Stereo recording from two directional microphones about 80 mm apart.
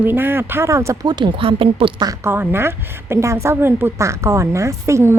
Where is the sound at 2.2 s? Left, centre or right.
Right.